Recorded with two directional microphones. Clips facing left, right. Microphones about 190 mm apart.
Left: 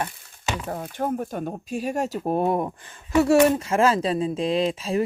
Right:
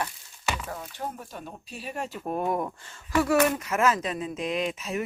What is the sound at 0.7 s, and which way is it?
Speech, 50° left (ahead or behind).